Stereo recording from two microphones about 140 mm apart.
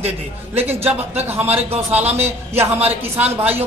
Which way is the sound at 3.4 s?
10° right (ahead or behind).